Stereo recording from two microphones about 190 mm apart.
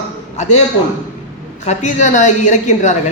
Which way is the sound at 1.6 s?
35° left (ahead or behind).